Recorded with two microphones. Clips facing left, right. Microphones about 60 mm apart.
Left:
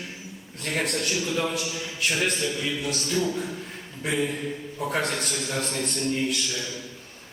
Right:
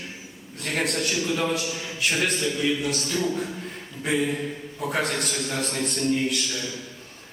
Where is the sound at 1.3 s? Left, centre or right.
Centre.